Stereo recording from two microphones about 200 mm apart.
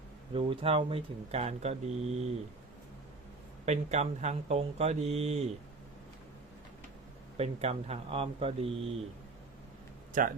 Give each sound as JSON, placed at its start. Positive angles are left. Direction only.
{"t": 0.3, "sound": "speech", "side_deg": -25}
{"t": 3.7, "sound": "speech", "side_deg": -35}
{"t": 7.3, "sound": "speech", "side_deg": -30}
{"t": 10.1, "sound": "speech", "side_deg": -45}